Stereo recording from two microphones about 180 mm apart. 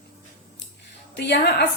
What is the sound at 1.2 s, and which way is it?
Speech, 65° left (ahead or behind).